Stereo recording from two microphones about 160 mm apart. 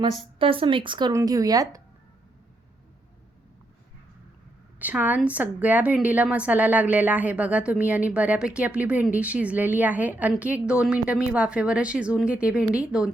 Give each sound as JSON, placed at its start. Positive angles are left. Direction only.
{"t": 0.3, "sound": "speech", "side_deg": -35}
{"t": 4.8, "sound": "a woman's voice", "side_deg": -10}